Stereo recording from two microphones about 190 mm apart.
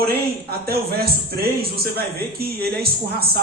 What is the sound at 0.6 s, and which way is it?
A man's voice, 55° right (ahead or behind).